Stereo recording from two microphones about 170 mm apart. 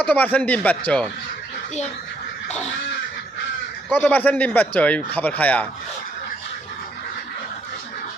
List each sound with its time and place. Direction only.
0.0 s a man's voice: 10° left (ahead or behind)
2.5 s a sound: 40° left (ahead or behind)
3.8 s a man's voice: 10° left (ahead or behind)